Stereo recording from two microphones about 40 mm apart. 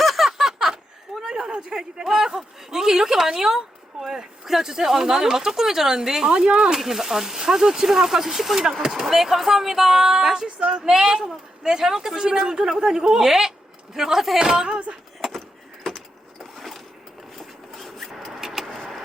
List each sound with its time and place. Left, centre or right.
0.0 s a sound: centre
2.0 s speech: centre
6.7 s speech: centre
10.6 s speech: right
15.2 s vehicle: centre
16.4 s a sound: centre
17.3 s vehicle: centre